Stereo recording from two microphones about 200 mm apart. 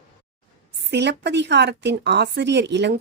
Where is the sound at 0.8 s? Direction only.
60° right (ahead or behind).